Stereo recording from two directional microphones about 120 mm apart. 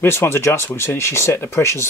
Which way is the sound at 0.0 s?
20° left (ahead or behind).